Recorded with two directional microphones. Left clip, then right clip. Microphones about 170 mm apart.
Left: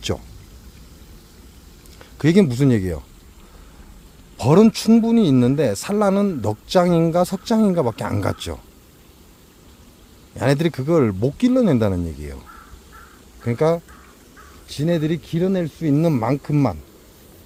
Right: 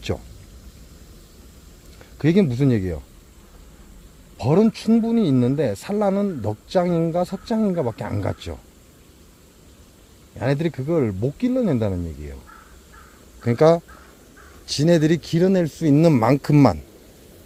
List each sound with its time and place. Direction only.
2.0 s speech: 5° left (ahead or behind)
4.4 s speech: 20° left (ahead or behind)
10.3 s speech: 15° left (ahead or behind)
13.4 s speech: 25° right (ahead or behind)